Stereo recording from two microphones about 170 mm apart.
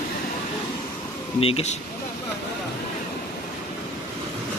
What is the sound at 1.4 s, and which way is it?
Speech, 35° left (ahead or behind).